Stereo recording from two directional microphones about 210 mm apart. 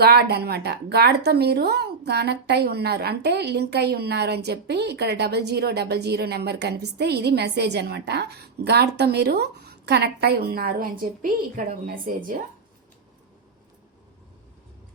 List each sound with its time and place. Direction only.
0.0 s a woman's voice: 50° right (ahead or behind)